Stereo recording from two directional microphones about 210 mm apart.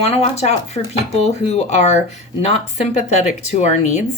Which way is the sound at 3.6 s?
35° left (ahead or behind).